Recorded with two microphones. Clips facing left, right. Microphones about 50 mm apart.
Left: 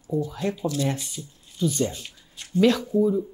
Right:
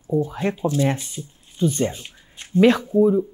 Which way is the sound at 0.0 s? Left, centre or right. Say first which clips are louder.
Right 4 dB; right.